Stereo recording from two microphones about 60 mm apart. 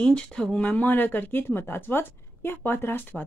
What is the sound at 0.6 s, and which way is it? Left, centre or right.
Speech, left.